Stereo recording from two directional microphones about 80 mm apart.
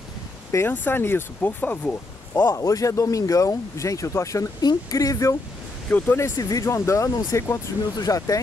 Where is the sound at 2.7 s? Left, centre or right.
Left.